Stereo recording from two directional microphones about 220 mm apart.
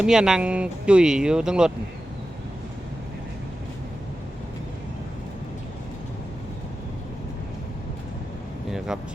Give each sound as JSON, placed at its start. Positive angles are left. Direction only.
{"t": 0.0, "sound": "speech", "side_deg": -5}
{"t": 8.9, "sound": "speech", "side_deg": -5}